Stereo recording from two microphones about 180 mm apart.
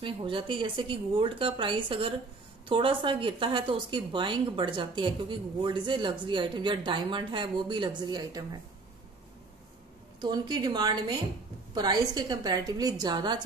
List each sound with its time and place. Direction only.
0.0 s a woman's voice: 30° right (ahead or behind)
10.2 s a woman's voice: 25° right (ahead or behind)